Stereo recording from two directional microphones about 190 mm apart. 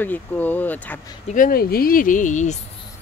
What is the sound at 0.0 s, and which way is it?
Speech, 10° left (ahead or behind).